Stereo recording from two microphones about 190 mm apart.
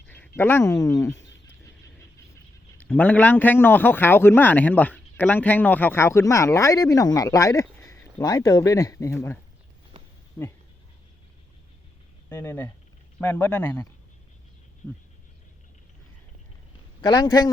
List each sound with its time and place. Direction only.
0.1 s speech: 10° left (ahead or behind)
2.3 s a man's voice: 10° left (ahead or behind)
12.3 s a man's voice: 10° left (ahead or behind)
17.0 s a man's voice: 20° left (ahead or behind)